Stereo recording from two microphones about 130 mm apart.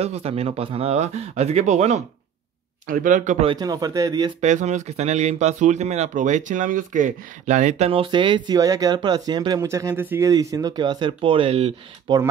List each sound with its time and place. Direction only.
0.0 s speech: 50° right (ahead or behind)
2.9 s speech: 90° right
3.5 s speech: 30° right (ahead or behind)
4.4 s speech: 65° right (ahead or behind)
7.9 s speech: 40° right (ahead or behind)
12.1 s speech: 35° right (ahead or behind)